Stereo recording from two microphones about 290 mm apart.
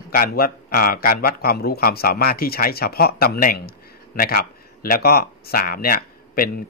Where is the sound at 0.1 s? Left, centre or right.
Left.